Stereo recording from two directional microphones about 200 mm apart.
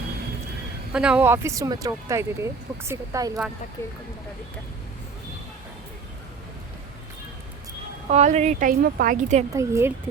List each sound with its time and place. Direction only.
0.9 s speech: 5° right (ahead or behind)
3.8 s speech: 10° left (ahead or behind)
8.1 s a woman's voice: 35° right (ahead or behind)
9.5 s speech: 15° right (ahead or behind)